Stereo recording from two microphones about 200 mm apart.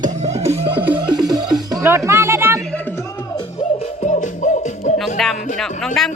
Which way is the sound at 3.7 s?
35° left (ahead or behind).